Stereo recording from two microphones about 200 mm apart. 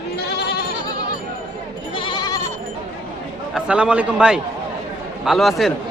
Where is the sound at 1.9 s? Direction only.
25° left (ahead or behind).